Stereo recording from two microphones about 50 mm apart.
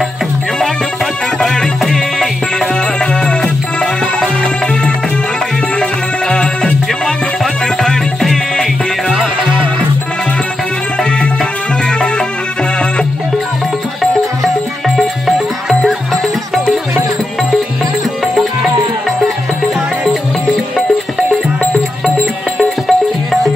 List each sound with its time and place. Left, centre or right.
1.8 s music: centre
11.0 s music: centre
15.0 s music: centre
15.8 s music: centre
18.2 s music: centre
20.7 s music: centre